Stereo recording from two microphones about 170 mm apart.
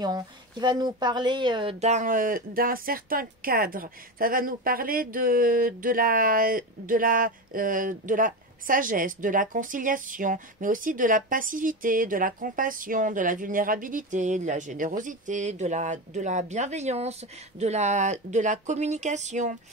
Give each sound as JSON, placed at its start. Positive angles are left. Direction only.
{"t": 0.0, "sound": "a woman's voice", "side_deg": -25}